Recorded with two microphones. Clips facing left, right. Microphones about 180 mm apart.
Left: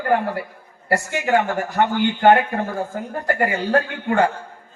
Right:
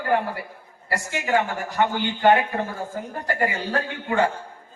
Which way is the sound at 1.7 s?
55° left (ahead or behind).